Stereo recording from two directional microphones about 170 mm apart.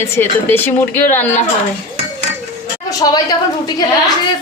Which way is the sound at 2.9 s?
20° left (ahead or behind).